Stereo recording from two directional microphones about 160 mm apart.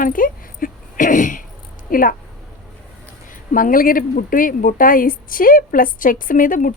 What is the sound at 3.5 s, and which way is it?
A woman's voice, 60° left (ahead or behind).